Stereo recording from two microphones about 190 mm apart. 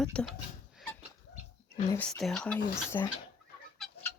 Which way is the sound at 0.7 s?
5° left (ahead or behind).